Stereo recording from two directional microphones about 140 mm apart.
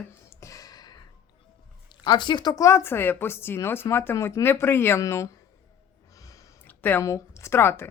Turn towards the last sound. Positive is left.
turn(degrees=15)  # may be behind; listen again after turning